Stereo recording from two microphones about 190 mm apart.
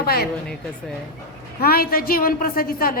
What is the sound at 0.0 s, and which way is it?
Speech, 50° left (ahead or behind).